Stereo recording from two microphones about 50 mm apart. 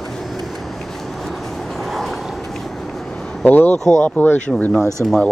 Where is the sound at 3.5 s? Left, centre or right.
Left.